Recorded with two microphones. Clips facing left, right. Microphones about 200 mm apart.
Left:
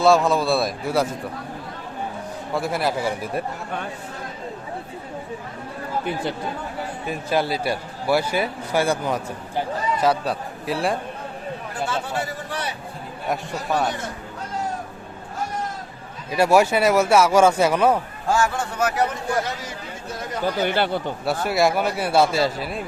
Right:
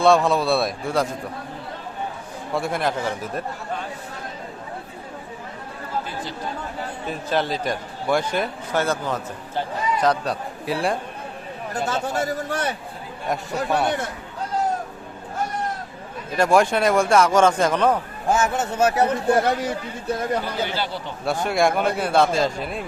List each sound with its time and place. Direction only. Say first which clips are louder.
0.0 s a man's voice: even; centre (ahead or behind)
2.5 s a man's voice: even; centre (ahead or behind)
7.1 s a man's voice: left 1 dB; 10° left (ahead or behind)
11.7 s a man's voice: right 3 dB; 40° right (ahead or behind)
13.2 s a man's voice: right 2 dB; centre (ahead or behind)
16.3 s a man's voice: left 1 dB; 10° left (ahead or behind)
18.3 s a man's voice: right 1 dB; 20° right (ahead or behind)
19.4 s speech: right 6 dB; 60° right (ahead or behind)
20.7 s speech: left 6 dB; 55° left (ahead or behind)
21.2 s a man's voice: right 1 dB; 5° left (ahead or behind)